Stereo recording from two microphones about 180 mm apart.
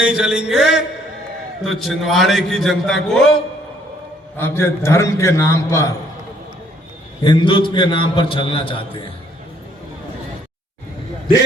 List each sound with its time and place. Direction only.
0.0 s a man's voice: 5° right (ahead or behind)
4.4 s a man's voice: 15° left (ahead or behind)
7.3 s a man's voice: 25° left (ahead or behind)